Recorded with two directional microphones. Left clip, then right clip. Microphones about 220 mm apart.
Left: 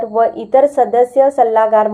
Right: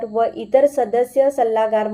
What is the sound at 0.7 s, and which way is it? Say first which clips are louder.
Speech: left 6 dB; 30° left (ahead or behind).